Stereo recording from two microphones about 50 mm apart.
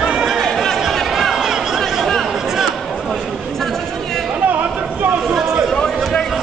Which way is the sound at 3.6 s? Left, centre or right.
Centre.